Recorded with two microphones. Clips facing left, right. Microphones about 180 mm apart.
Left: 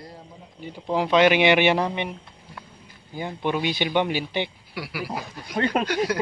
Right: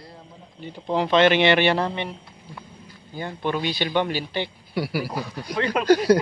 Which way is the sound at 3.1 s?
10° left (ahead or behind).